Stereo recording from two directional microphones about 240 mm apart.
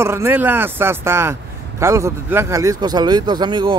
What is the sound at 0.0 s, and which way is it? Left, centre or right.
Speech, centre.